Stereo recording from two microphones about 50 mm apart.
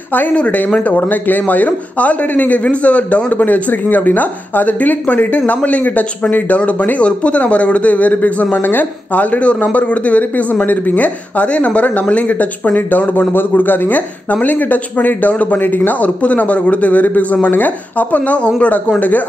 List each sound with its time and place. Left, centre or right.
0.1 s speech: left
1.0 s speech: left